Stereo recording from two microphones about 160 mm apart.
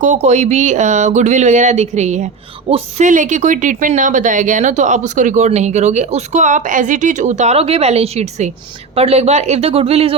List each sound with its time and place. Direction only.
0.0 s speech: 45° right (ahead or behind)